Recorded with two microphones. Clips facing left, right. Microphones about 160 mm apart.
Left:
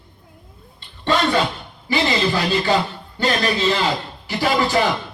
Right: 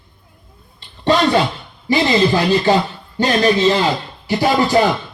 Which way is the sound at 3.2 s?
40° right (ahead or behind).